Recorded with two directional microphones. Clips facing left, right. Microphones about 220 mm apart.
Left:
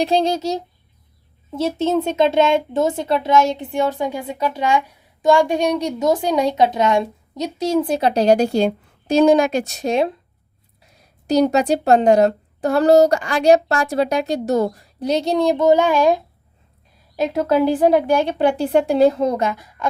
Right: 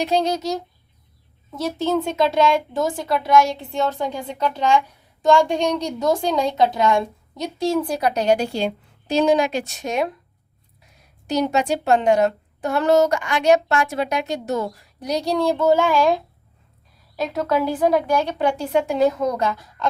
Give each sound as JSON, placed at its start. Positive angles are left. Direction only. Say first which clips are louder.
{"t": 0.0, "sound": "speech", "louder": "left 3 dB", "side_deg": 30}
{"t": 11.3, "sound": "a woman's voice", "louder": "left 5 dB", "side_deg": 35}
{"t": 17.2, "sound": "speech", "louder": "left 5 dB", "side_deg": 30}